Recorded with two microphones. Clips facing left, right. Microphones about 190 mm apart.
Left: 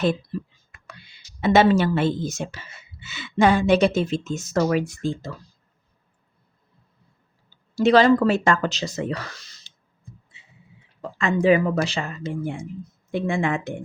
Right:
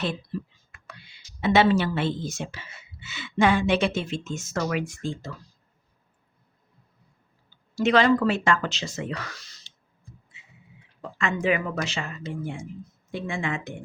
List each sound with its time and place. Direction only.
0.9 s speech: 45° left (ahead or behind)
7.8 s speech: 35° left (ahead or behind)
11.2 s speech: 35° left (ahead or behind)
13.1 s speech: 55° left (ahead or behind)